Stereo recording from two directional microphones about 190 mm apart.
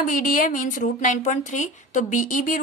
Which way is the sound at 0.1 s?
45° left (ahead or behind).